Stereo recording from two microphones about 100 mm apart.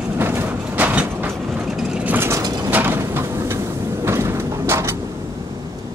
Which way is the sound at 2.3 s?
40° right (ahead or behind).